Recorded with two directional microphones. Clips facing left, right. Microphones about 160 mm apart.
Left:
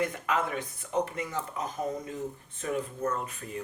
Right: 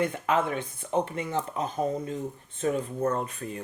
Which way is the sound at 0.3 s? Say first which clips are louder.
Right 4 dB; 30° right (ahead or behind).